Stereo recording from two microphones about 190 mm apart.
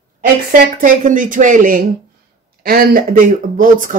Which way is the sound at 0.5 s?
45° right (ahead or behind).